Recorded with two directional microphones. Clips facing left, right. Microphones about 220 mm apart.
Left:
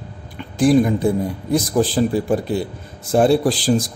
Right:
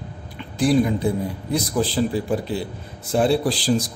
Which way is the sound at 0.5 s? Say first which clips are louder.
Left 4 dB; 45° left (ahead or behind).